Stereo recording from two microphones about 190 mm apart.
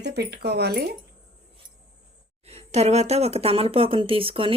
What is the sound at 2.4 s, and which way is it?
Speech, 35° right (ahead or behind).